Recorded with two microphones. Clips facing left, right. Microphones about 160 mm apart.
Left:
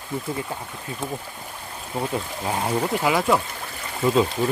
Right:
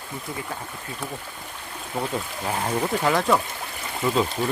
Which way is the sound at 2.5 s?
10° left (ahead or behind).